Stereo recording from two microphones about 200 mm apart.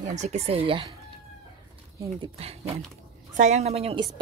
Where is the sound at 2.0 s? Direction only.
25° right (ahead or behind).